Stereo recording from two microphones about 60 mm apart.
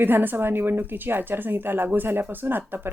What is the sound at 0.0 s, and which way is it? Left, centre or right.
A woman's voice, right.